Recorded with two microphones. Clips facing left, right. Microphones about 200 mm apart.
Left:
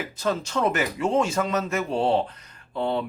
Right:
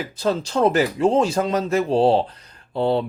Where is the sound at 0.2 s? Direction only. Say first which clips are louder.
Right 5 dB; 30° right (ahead or behind).